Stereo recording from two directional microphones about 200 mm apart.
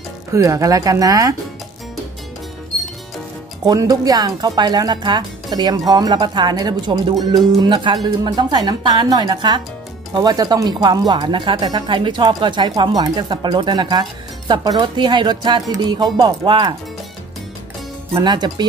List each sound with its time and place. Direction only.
0.3 s speech: 15° right (ahead or behind)
3.6 s speech: 20° right (ahead or behind)
18.1 s speech: 20° right (ahead or behind)